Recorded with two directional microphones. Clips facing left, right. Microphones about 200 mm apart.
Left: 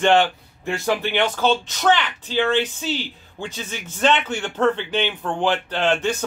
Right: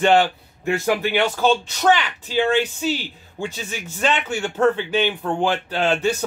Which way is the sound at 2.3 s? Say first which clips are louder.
Right 1 dB; 10° right (ahead or behind).